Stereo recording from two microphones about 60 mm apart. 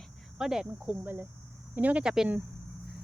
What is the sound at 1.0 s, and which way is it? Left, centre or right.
Speech, right.